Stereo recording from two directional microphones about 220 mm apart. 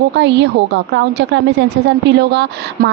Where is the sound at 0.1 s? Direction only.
50° right (ahead or behind).